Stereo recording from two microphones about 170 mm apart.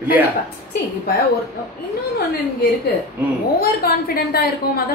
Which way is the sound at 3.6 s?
65° left (ahead or behind).